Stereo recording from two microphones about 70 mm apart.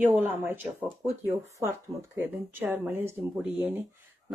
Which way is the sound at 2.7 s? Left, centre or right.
Right.